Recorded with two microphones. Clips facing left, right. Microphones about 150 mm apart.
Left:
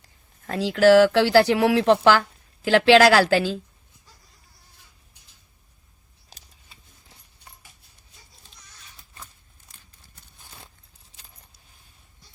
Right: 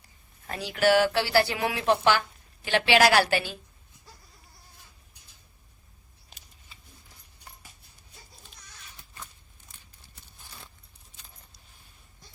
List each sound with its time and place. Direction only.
0.0 s speech: 90° left